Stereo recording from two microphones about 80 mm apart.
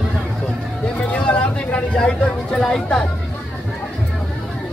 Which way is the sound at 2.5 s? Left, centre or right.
Centre.